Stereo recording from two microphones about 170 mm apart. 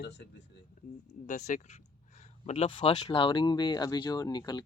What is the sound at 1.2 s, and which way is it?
Speech, 45° left (ahead or behind).